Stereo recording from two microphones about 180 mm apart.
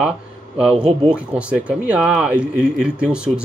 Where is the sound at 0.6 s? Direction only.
5° right (ahead or behind).